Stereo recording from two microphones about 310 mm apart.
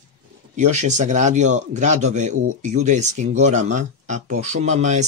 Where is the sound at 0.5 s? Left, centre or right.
Right.